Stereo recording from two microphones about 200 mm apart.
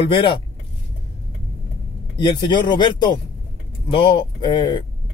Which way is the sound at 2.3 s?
20° left (ahead or behind).